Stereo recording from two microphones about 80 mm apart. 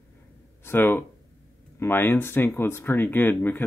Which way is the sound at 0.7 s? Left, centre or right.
Left.